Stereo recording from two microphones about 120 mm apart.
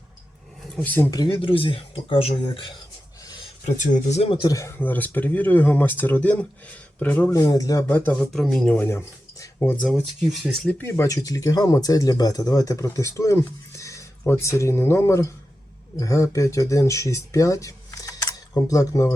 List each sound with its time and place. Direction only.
0.8 s speech: 15° left (ahead or behind)
1.3 s speech: 45° left (ahead or behind)
3.7 s speech: 85° left
4.3 s speech: 35° left (ahead or behind); by 7.3 s 15° left (ahead or behind)
7.3 s speech: 30° left (ahead or behind)
7.9 s speech: 15° left (ahead or behind)
8.7 s speech: 20° left (ahead or behind)
9.8 s speech: centre (ahead or behind)
10.7 s speech: 20° left (ahead or behind)